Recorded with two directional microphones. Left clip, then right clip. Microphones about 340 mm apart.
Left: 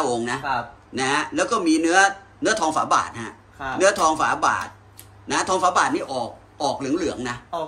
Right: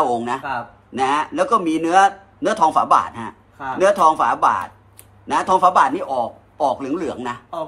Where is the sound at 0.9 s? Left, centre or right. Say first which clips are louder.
Right 4 dB; centre.